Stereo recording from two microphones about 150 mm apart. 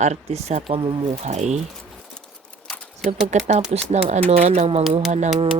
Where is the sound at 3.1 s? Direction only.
60° right (ahead or behind).